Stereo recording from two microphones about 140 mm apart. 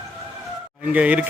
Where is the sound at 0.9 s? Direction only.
10° right (ahead or behind).